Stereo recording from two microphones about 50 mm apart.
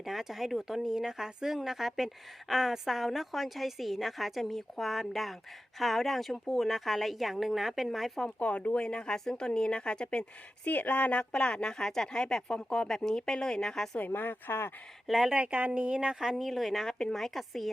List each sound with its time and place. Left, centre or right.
0.0 s a woman's voice: centre
8.4 s speech: left
10.7 s speech: left; by 14.0 s centre
14.1 s speech: left
15.0 s speech: centre
15.3 s a woman's voice: right
16.3 s a woman's voice: centre